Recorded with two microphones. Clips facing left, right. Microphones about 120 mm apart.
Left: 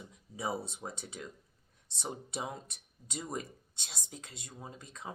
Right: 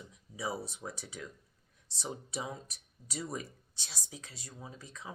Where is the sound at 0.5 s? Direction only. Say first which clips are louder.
Left 1 dB; 25° left (ahead or behind).